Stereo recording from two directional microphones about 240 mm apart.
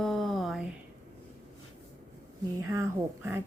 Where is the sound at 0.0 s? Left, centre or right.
Centre.